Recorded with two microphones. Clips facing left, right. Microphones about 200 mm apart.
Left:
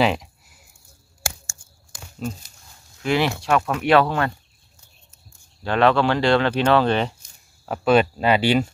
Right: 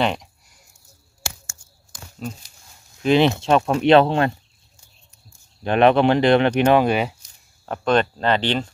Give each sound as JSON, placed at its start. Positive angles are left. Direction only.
{"t": 0.0, "sound": "a sound", "side_deg": 5}
{"t": 3.0, "sound": "speech", "side_deg": -20}
{"t": 5.6, "sound": "speech", "side_deg": -20}
{"t": 7.6, "sound": "speech", "side_deg": 5}